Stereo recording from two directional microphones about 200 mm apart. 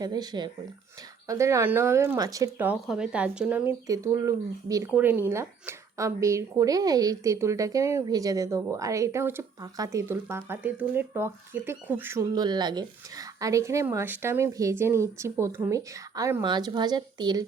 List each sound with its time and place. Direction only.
0.0 s speech: 20° right (ahead or behind)
3.8 s speech: 15° right (ahead or behind)